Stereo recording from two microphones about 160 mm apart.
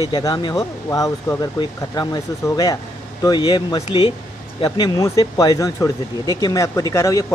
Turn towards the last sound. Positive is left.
turn(degrees=20)  # may be behind; listen again after turning